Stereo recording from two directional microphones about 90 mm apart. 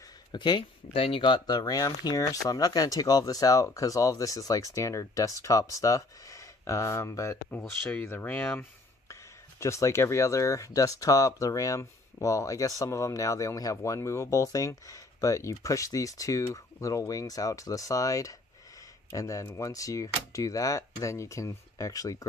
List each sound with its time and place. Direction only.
0.3 s speech: 60° left (ahead or behind)
1.6 s speech: 45° left (ahead or behind); by 8.6 s 20° left (ahead or behind)
9.1 s speech: 35° left (ahead or behind)